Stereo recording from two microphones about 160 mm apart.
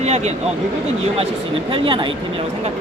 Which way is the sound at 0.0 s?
45° right (ahead or behind).